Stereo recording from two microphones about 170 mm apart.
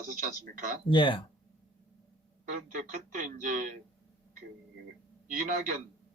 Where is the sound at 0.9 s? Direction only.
30° left (ahead or behind).